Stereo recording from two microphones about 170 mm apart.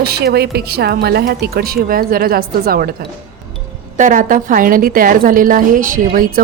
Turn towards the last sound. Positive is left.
turn(degrees=-55)  # may be behind; listen again after turning